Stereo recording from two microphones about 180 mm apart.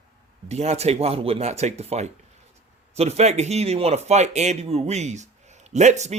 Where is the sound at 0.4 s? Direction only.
35° right (ahead or behind).